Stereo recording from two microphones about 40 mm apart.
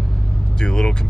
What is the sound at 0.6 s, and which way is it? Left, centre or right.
Speech, centre.